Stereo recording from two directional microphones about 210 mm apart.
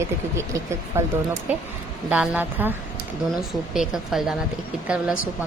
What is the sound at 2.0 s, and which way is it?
Speech, 5° right (ahead or behind).